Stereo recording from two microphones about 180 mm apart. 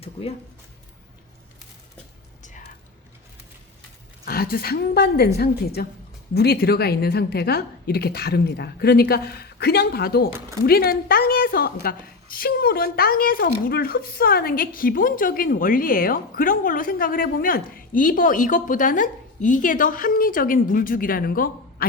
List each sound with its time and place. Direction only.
0.0 s speech: 30° left (ahead or behind)
2.4 s music: 45° left (ahead or behind)
4.3 s a woman's voice: 55° left (ahead or behind)